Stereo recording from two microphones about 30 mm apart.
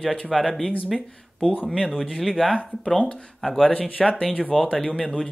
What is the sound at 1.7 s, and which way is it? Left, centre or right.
Speech, centre.